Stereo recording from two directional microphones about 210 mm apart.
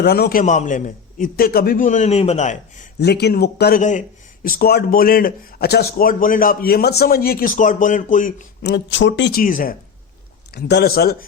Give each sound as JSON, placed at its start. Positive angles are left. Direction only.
{"t": 0.0, "sound": "a man's voice", "side_deg": 50}
{"t": 3.0, "sound": "speech", "side_deg": 50}
{"t": 3.8, "sound": "a man's voice", "side_deg": 35}
{"t": 8.6, "sound": "speech", "side_deg": 55}
{"t": 9.4, "sound": "a man's voice", "side_deg": 40}